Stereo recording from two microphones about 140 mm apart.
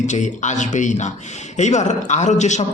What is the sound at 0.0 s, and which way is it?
A man's voice, 60° left (ahead or behind).